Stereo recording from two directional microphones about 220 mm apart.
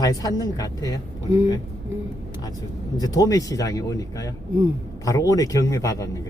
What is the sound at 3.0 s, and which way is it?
Speech, 15° left (ahead or behind).